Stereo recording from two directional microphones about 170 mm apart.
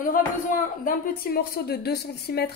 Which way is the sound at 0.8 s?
65° left (ahead or behind).